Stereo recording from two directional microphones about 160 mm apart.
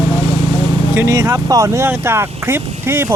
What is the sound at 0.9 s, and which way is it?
Speech, 15° right (ahead or behind).